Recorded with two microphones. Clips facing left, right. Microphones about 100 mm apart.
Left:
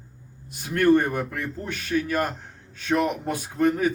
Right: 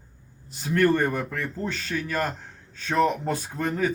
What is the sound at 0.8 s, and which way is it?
A man's voice, 15° left (ahead or behind).